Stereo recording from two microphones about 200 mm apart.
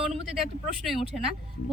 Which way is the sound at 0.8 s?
Centre (ahead or behind).